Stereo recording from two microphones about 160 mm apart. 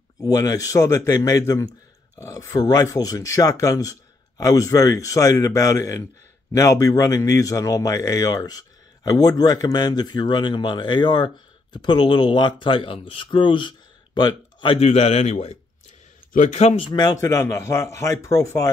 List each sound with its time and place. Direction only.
0.2 s speech: 20° left (ahead or behind)
14.9 s a man's voice: 45° left (ahead or behind); by 18.7 s 20° left (ahead or behind)